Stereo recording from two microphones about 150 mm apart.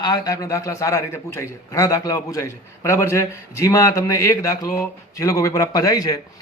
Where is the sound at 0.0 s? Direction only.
25° left (ahead or behind).